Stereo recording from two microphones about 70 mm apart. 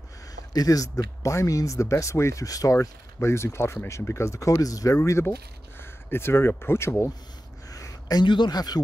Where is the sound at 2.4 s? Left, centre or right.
Left.